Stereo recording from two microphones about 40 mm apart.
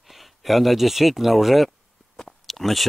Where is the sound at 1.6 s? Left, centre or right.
Centre.